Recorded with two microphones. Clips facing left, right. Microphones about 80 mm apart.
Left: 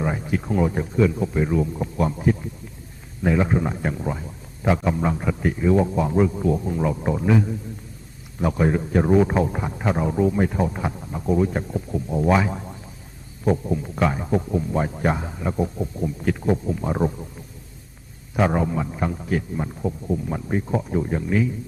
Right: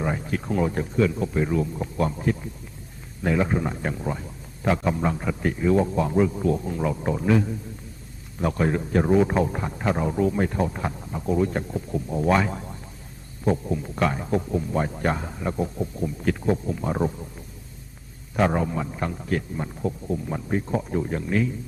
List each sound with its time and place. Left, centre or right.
0.0 s a man's voice: centre
18.3 s a man's voice: centre